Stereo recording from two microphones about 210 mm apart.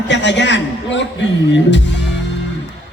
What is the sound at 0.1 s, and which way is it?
Speech, 55° left (ahead or behind).